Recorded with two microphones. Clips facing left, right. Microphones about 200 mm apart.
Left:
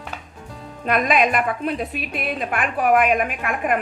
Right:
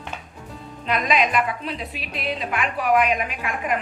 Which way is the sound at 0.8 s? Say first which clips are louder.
Left 3 dB; 50° left (ahead or behind).